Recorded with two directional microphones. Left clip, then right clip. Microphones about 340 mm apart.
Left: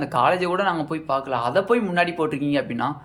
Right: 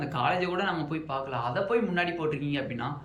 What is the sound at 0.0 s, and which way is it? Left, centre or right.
Speech, centre.